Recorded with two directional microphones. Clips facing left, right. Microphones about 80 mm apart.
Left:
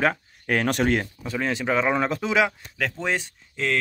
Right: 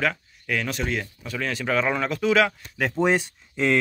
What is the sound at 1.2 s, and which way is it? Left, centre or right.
Speech, left.